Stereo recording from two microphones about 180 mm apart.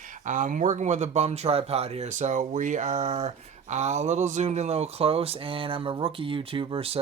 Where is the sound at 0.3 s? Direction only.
45° right (ahead or behind).